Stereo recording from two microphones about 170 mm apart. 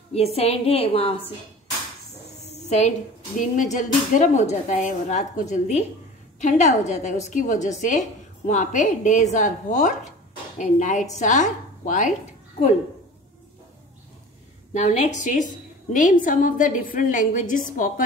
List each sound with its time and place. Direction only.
0.1 s a woman's voice: 35° left (ahead or behind)
2.5 s a sound: 40° left (ahead or behind)
3.3 s a woman's voice: 45° left (ahead or behind)
14.7 s a woman's voice: 45° left (ahead or behind)